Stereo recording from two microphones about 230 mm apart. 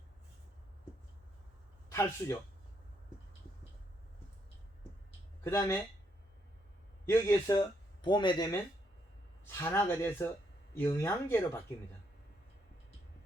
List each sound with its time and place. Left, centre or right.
1.9 s speech: centre
5.4 s speech: centre
7.1 s speech: centre
9.6 s speech: centre